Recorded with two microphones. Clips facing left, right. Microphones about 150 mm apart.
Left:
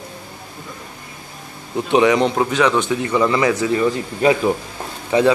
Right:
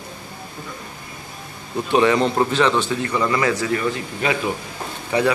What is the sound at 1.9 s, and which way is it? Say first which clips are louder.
Speech: left 2 dB; 15° left (ahead or behind).